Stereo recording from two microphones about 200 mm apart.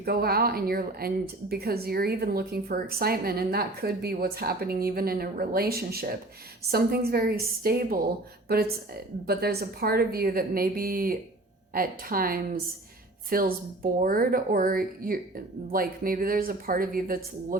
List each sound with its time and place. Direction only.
0.0 s a woman's voice: 50° right (ahead or behind)